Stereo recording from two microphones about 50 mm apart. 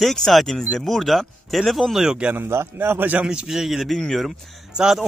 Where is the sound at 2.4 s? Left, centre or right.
Right.